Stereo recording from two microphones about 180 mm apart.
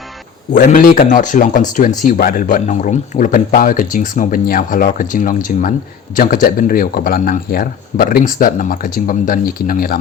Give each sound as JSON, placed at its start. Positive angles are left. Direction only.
{"t": 0.5, "sound": "speech", "side_deg": 50}